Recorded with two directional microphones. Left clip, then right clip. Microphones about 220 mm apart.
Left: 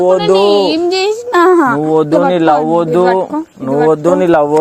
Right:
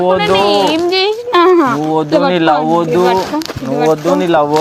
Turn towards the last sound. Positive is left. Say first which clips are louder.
# left 2 dB
turn(degrees=40)  # may be behind; listen again after turning